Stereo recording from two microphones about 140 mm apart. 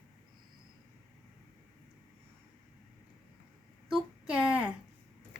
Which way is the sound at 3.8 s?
5° right (ahead or behind).